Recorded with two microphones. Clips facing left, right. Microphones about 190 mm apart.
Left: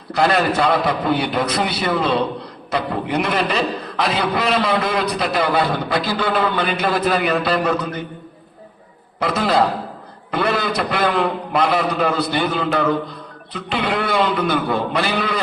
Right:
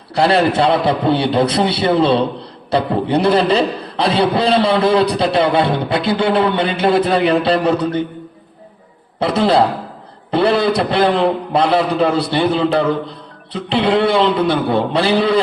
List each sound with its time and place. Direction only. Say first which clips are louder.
0.1 s a man's voice: right 4 dB; 30° right (ahead or behind)
9.2 s a man's voice: right 4 dB; 30° right (ahead or behind)